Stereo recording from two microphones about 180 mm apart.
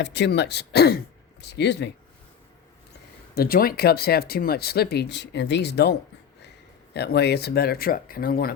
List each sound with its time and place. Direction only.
0.0 s speech: 75° left (ahead or behind)
3.3 s speech: 55° left (ahead or behind)